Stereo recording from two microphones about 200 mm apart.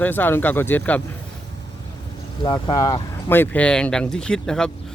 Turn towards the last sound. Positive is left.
turn(degrees=5)  # may be behind; listen again after turning